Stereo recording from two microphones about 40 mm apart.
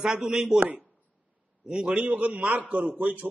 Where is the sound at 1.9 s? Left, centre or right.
Right.